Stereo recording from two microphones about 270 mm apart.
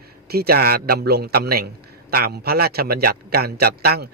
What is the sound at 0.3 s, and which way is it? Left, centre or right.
A man's voice, right.